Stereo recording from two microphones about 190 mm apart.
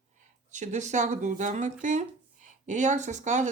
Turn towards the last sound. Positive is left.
turn(degrees=-40)  # may be behind; listen again after turning